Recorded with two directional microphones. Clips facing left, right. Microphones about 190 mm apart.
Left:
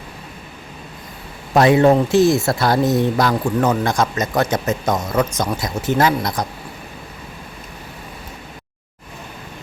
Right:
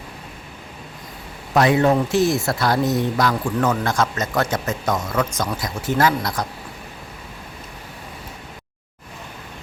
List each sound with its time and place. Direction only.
1.5 s speech: 25° left (ahead or behind)